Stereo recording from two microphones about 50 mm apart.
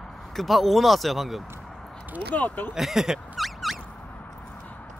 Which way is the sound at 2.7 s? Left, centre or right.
Centre.